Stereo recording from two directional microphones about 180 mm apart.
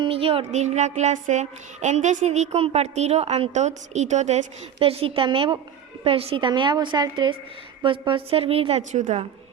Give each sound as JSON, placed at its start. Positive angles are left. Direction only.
{"t": 0.0, "sound": "child singing", "side_deg": -30}
{"t": 6.1, "sound": "a woman's voice", "side_deg": -30}
{"t": 7.8, "sound": "child singing", "side_deg": -25}